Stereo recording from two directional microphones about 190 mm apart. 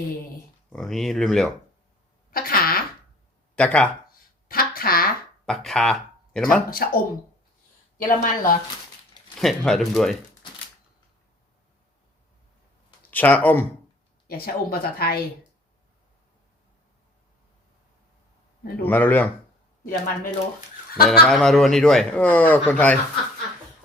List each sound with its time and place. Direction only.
0.7 s speech: centre (ahead or behind)
2.3 s fart: 50° left (ahead or behind)
3.5 s speech: 5° left (ahead or behind)
4.1 s a sound: 50° left (ahead or behind)
5.5 s speech: centre (ahead or behind)
6.7 s speech: 50° left (ahead or behind)
8.0 s speech: 45° left (ahead or behind)
9.3 s speech: centre (ahead or behind)
13.1 s speech: 10° left (ahead or behind)
14.3 s speech: 55° left (ahead or behind)
18.9 s speech: 10° left (ahead or behind)
21.0 s speech: centre (ahead or behind)